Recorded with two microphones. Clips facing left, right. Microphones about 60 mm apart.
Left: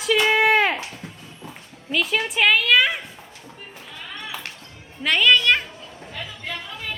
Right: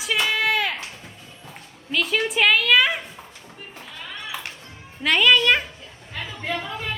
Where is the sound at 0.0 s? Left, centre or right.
Centre.